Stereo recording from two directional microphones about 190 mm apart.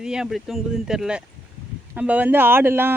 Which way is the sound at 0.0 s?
5° right (ahead or behind).